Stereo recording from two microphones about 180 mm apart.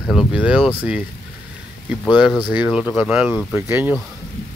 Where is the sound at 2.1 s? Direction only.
5° right (ahead or behind).